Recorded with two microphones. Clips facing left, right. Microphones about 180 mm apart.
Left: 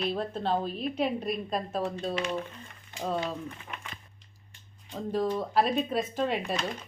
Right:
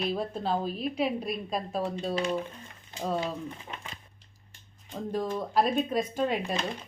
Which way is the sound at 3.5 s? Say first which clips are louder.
Right 1 dB; 25° right (ahead or behind).